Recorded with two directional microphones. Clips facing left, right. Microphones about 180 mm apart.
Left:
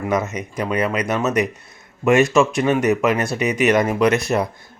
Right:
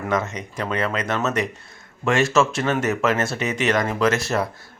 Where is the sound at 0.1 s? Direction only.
20° left (ahead or behind).